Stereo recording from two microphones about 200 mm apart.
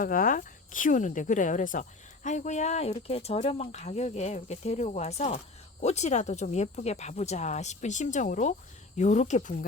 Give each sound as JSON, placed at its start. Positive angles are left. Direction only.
{"t": 0.0, "sound": "speech", "side_deg": 45}